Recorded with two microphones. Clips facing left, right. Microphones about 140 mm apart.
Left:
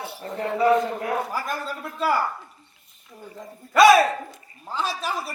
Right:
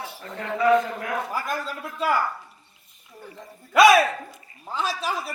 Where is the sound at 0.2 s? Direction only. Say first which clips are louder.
Left 3 dB; 35° left (ahead or behind).